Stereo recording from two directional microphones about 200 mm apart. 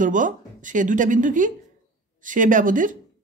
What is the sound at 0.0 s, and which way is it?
Speech, 40° right (ahead or behind).